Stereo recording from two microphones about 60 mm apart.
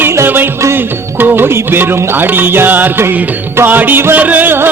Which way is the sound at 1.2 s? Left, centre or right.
Right.